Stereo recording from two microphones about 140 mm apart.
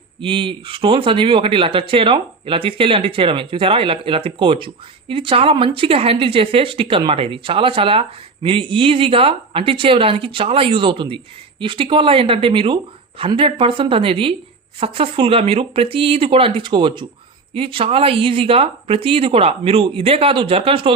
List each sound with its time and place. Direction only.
0.2 s speech: 40° right (ahead or behind)